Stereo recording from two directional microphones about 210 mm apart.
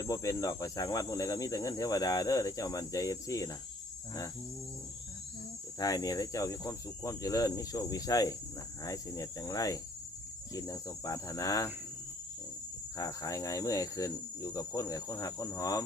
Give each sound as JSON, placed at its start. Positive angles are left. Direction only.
{"t": 0.0, "sound": "speech", "side_deg": 15}
{"t": 5.8, "sound": "speech", "side_deg": 15}
{"t": 13.0, "sound": "speech", "side_deg": 15}